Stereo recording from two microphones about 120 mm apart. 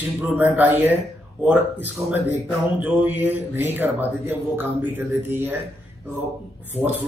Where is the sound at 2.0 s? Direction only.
15° right (ahead or behind).